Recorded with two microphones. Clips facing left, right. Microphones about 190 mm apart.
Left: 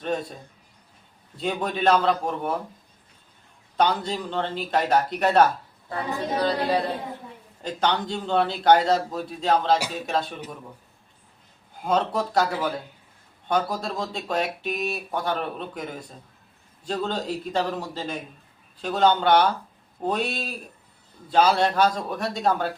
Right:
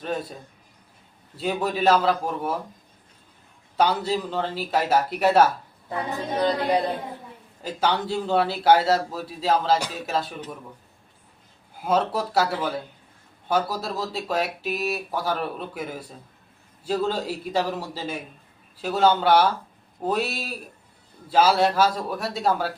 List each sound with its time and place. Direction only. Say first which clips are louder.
0.0 s speech: left 1 dB; centre (ahead or behind)
1.4 s speech: right 1 dB; 5° right (ahead or behind)
3.8 s a man's voice: right 1 dB; 5° right (ahead or behind)
6.4 s a man's voice: right 2 dB; 20° right (ahead or behind)
7.6 s a man's voice: even; 5° right (ahead or behind)
11.8 s a man's voice: right 1 dB; 5° right (ahead or behind)
13.5 s a man's voice: even; 5° right (ahead or behind)